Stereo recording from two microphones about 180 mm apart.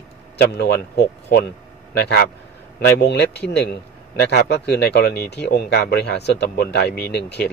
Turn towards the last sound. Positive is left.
turn(degrees=65)  # may be behind; listen again after turning